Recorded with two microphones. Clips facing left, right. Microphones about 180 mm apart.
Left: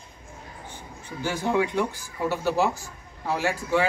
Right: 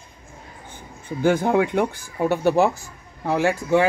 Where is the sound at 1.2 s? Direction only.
55° right (ahead or behind).